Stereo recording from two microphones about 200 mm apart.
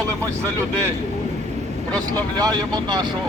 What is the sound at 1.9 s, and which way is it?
Speech, 5° left (ahead or behind).